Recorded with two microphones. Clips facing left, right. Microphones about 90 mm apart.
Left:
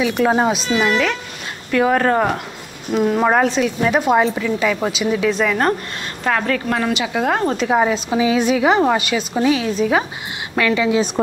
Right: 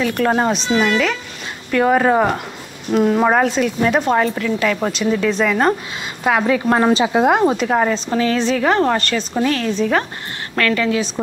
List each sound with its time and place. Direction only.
0.0 s a woman's voice: 5° left (ahead or behind); by 6.6 s 10° right (ahead or behind)
6.7 s speech: 30° right (ahead or behind); by 7.5 s 15° right (ahead or behind)
7.5 s a woman's voice: 5° left (ahead or behind)